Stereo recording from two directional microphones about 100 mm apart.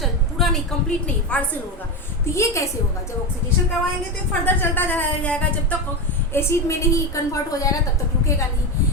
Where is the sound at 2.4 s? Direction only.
30° left (ahead or behind).